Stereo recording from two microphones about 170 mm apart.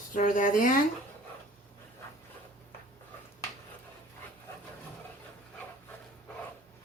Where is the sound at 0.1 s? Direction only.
50° left (ahead or behind).